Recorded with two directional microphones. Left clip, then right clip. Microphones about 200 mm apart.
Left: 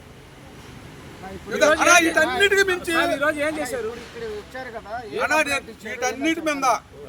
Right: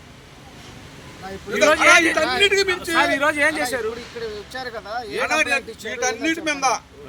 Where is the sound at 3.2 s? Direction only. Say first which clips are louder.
Right 4 dB; 35° right (ahead or behind).